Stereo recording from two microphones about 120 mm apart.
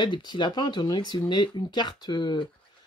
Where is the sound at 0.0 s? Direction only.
40° left (ahead or behind).